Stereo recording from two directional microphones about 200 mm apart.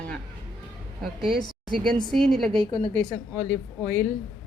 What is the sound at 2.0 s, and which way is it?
Speech, centre (ahead or behind).